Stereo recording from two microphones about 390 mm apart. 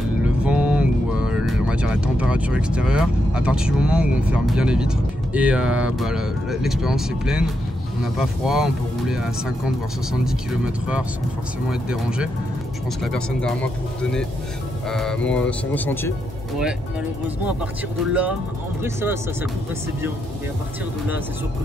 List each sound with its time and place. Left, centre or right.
0.2 s speech: centre
14.9 s speech: centre
18.8 s speech: centre